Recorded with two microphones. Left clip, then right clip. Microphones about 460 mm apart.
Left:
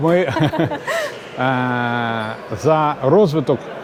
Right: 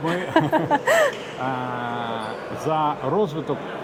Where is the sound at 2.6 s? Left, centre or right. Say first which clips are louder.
Left 7 dB; left.